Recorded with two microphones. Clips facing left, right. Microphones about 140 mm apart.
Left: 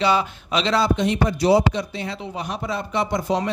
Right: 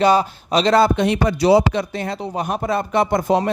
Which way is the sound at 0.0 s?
40° right (ahead or behind).